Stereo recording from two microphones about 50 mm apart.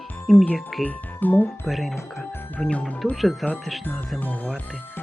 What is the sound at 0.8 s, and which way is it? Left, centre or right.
Speech, left.